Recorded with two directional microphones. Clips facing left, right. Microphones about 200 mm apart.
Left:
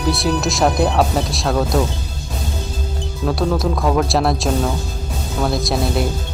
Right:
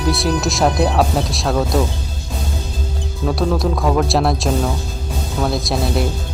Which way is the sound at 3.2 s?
Centre (ahead or behind).